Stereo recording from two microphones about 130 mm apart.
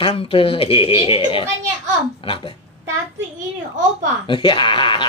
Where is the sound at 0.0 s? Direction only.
45° left (ahead or behind).